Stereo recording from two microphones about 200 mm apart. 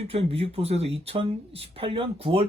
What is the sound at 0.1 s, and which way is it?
Speech, 30° right (ahead or behind).